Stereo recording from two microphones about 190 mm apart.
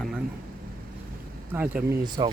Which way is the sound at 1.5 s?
10° right (ahead or behind).